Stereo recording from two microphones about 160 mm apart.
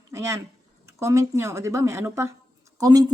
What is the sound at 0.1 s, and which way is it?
Speech, 15° right (ahead or behind).